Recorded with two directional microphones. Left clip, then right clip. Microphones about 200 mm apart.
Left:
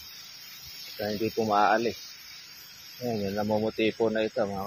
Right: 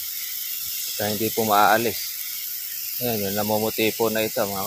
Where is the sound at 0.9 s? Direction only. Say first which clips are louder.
Right 4 dB; 35° right (ahead or behind).